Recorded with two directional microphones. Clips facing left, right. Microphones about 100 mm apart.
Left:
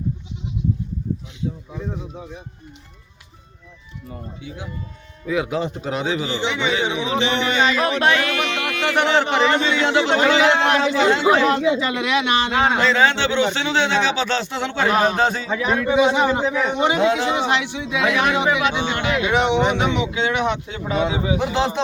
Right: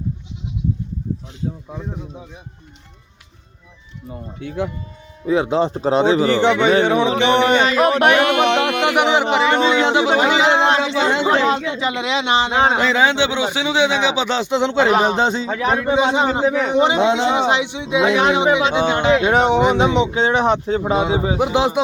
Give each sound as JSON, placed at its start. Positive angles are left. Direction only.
{"t": 4.4, "sound": "speech", "side_deg": -65}
{"t": 5.2, "sound": "speech", "side_deg": -30}
{"t": 6.1, "sound": "speech", "side_deg": -55}
{"t": 7.8, "sound": "a man's voice", "side_deg": -25}
{"t": 15.4, "sound": "a man's voice", "side_deg": -35}
{"t": 19.3, "sound": "speech", "side_deg": -40}
{"t": 21.4, "sound": "speech", "side_deg": -15}